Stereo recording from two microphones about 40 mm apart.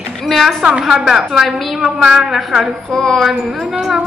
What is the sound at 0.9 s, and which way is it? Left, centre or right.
A woman's voice, centre.